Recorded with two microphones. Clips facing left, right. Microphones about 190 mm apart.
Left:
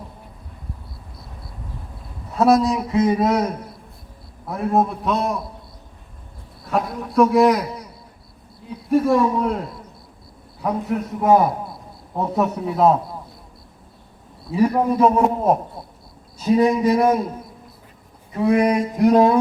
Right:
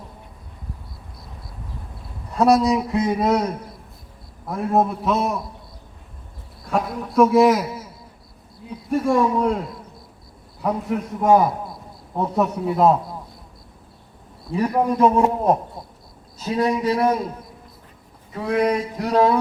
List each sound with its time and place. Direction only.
2.3 s a man's voice: centre (ahead or behind)
4.4 s a man's voice: centre (ahead or behind)
6.7 s a man's voice: centre (ahead or behind)
8.9 s a man's voice: centre (ahead or behind)
10.6 s a man's voice: centre (ahead or behind)
14.5 s a man's voice: 5° left (ahead or behind)
16.6 s a sound: 10° left (ahead or behind)
18.4 s a sound: 10° left (ahead or behind)